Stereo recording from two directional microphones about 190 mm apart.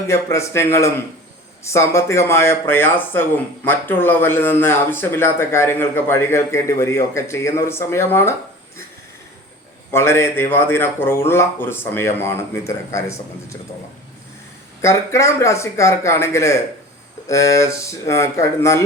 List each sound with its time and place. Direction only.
0.1 s speech: 15° left (ahead or behind)
9.9 s speech: 15° left (ahead or behind)
14.8 s speech: 15° left (ahead or behind)